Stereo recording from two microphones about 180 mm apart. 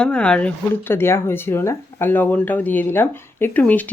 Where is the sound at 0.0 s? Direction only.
5° left (ahead or behind).